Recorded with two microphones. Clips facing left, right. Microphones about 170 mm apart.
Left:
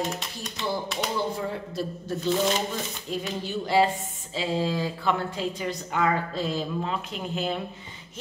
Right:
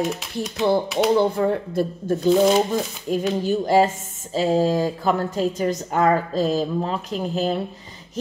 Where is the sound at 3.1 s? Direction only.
50° right (ahead or behind).